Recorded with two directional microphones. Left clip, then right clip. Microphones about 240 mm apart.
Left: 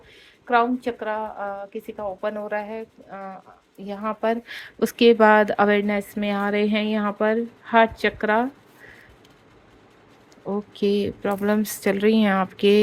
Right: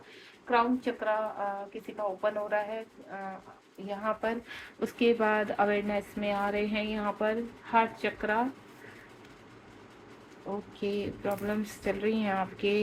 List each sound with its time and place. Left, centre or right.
0.5 s speech: left
10.8 s speech: left